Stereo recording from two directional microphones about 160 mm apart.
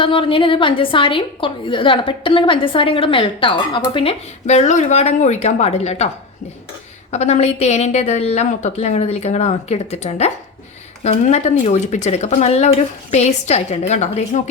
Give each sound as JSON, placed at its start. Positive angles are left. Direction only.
{"t": 0.0, "sound": "a woman's voice", "side_deg": 35}
{"t": 7.1, "sound": "a woman's voice", "side_deg": 45}